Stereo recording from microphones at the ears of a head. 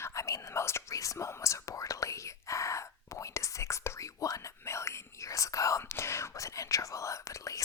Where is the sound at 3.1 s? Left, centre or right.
Left.